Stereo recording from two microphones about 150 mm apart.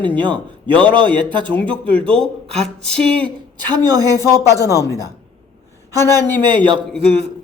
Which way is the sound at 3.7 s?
25° right (ahead or behind).